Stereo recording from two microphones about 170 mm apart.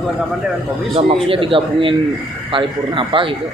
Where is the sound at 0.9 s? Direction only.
35° right (ahead or behind).